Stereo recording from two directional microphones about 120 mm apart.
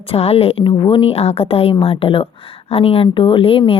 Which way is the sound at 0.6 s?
40° left (ahead or behind).